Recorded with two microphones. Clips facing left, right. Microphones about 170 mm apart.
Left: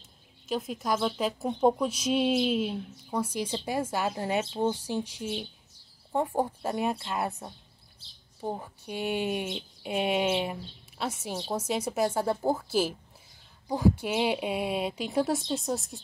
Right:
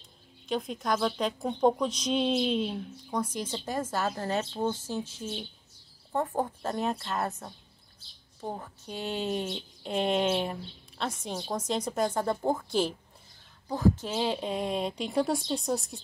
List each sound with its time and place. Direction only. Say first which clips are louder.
0.5 s a woman's voice: even; 5° left (ahead or behind)